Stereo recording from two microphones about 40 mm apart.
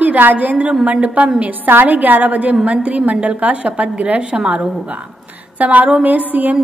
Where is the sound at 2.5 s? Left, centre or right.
Right.